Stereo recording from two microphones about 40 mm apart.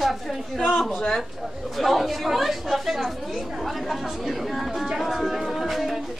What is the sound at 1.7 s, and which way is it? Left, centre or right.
Speech, centre.